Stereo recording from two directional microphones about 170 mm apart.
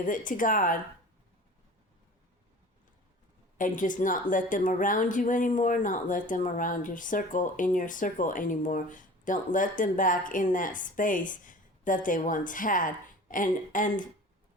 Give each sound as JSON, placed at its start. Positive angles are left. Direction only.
{"t": 0.3, "sound": "a woman's voice", "side_deg": 50}
{"t": 3.6, "sound": "a woman's voice", "side_deg": 50}